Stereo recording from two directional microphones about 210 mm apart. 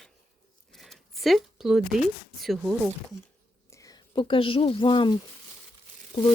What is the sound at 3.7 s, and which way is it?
Speech, 15° left (ahead or behind).